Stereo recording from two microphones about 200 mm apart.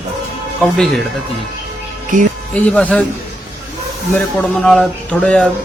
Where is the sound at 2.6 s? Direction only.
5° left (ahead or behind).